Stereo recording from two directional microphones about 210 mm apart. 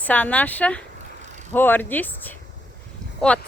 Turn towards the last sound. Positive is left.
turn(degrees=5)  # may be behind; listen again after turning